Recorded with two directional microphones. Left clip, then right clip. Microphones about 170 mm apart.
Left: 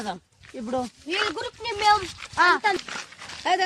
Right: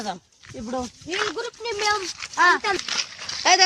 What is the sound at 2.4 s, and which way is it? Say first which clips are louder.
Speech: right 2 dB; centre (ahead or behind).